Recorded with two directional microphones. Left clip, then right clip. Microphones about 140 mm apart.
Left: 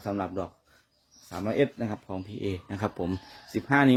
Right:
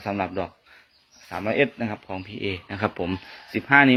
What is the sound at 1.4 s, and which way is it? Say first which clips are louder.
Speech: right 4 dB; 25° left (ahead or behind).